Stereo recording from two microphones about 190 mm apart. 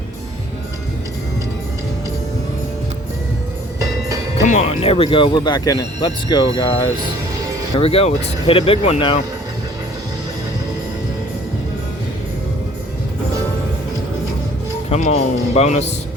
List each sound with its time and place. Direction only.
4.4 s speech: 35° left (ahead or behind)
7.8 s speech: 30° left (ahead or behind)
14.8 s speech: 35° left (ahead or behind)